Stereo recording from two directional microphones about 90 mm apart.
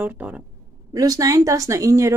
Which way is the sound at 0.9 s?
45° right (ahead or behind).